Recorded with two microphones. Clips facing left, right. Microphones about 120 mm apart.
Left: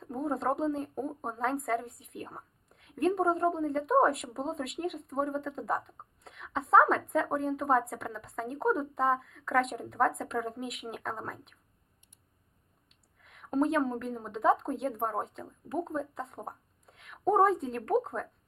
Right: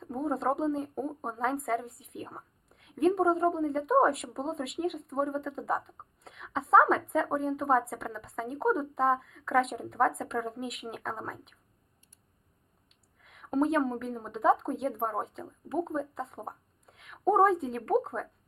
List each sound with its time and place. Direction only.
0.0 s speech: centre (ahead or behind)
13.2 s speech: centre (ahead or behind)